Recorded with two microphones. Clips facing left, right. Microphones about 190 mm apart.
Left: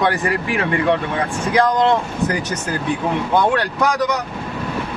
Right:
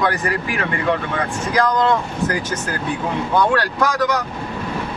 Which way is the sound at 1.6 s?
25° left (ahead or behind).